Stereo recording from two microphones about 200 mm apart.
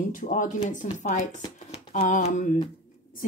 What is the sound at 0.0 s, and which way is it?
Speech, 40° left (ahead or behind).